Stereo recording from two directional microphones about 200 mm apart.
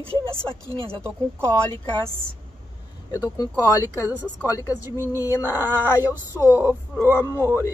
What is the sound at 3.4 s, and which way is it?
Speech, 15° left (ahead or behind).